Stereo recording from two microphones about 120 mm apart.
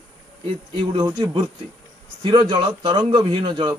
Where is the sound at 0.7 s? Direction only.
40° right (ahead or behind).